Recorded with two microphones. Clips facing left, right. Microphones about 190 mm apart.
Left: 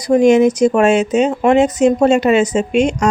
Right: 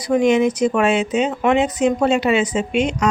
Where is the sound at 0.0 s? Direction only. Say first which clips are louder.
Left 5 dB; 40° left (ahead or behind).